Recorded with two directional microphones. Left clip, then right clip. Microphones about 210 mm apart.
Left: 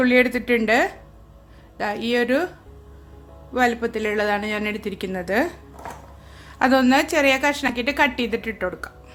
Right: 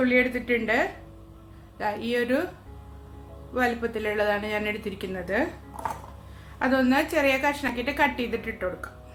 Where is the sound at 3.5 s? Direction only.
40° left (ahead or behind).